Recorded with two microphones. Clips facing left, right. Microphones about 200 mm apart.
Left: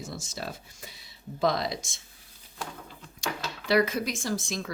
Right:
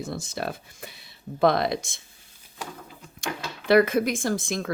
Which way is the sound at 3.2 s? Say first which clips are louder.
Right 5 dB; 55° right (ahead or behind).